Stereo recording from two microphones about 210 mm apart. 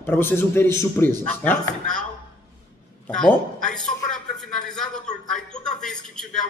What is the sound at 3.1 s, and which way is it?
A man's voice, 5° left (ahead or behind).